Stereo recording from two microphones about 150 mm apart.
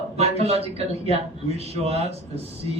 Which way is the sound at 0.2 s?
45° right (ahead or behind).